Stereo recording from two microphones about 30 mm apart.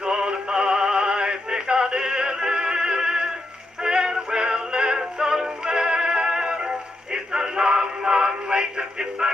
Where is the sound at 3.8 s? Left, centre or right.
Right.